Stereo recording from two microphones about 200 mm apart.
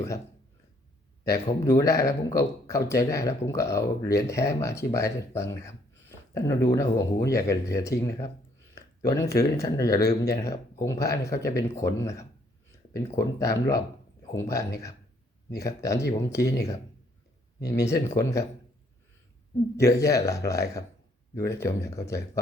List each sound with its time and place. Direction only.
1.6 s speech: 15° left (ahead or behind)
17.7 s speech: 15° left (ahead or behind)
19.7 s speech: 15° left (ahead or behind)